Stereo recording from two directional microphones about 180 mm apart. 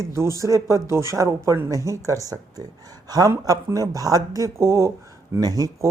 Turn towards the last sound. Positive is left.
turn(degrees=-20)  # may be behind; listen again after turning